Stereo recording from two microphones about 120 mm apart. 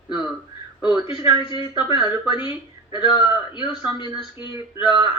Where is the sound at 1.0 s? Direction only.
45° left (ahead or behind).